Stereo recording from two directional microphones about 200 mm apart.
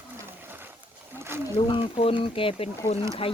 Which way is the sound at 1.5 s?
30° left (ahead or behind).